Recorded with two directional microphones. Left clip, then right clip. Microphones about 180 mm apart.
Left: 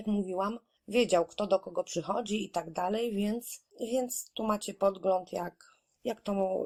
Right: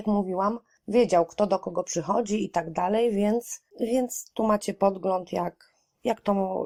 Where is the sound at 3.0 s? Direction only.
40° right (ahead or behind).